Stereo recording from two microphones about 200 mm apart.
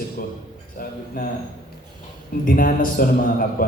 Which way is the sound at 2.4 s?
45° left (ahead or behind).